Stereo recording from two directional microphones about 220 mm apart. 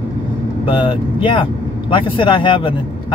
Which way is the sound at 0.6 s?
20° left (ahead or behind).